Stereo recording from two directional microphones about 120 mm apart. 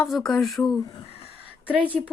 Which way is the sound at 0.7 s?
30° left (ahead or behind).